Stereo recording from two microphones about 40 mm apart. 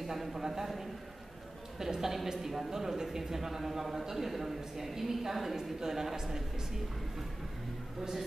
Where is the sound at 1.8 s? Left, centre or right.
Centre.